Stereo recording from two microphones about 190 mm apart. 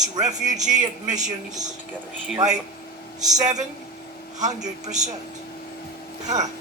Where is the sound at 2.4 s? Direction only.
20° right (ahead or behind).